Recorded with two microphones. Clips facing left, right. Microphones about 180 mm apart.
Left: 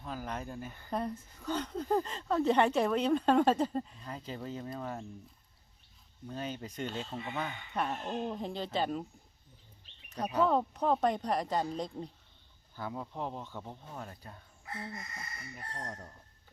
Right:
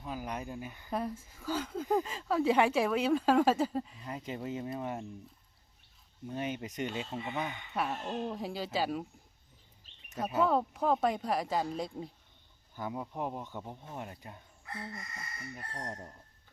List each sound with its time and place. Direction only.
0.0 s speech: 10° right (ahead or behind)
6.2 s speech: 20° right (ahead or behind)
10.2 s speech: 5° right (ahead or behind)
15.7 s speech: 15° right (ahead or behind)